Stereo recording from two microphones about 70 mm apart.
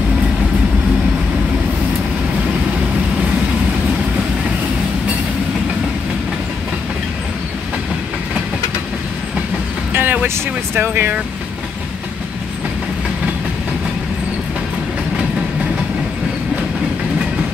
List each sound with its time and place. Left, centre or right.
9.9 s speech: right